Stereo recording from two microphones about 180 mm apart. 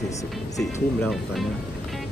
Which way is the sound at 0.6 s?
15° left (ahead or behind).